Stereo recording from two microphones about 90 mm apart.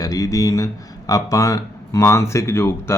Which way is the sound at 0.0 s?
40° left (ahead or behind).